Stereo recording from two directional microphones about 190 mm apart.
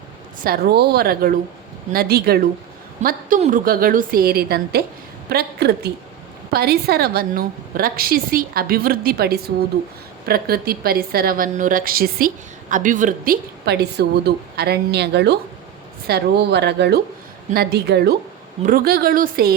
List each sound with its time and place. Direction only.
0.4 s a woman's voice: 55° right (ahead or behind)
18.6 s a woman's voice: 50° right (ahead or behind)